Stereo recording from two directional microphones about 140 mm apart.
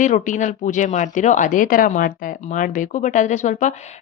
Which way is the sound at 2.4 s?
65° left (ahead or behind).